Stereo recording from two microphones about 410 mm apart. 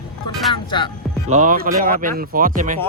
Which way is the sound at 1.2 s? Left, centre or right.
Centre.